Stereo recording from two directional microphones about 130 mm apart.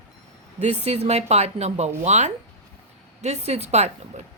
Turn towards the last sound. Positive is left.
turn(degrees=-55)  # may be behind; listen again after turning